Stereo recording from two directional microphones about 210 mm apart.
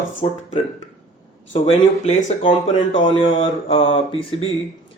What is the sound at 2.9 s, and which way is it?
A man's voice, 25° left (ahead or behind).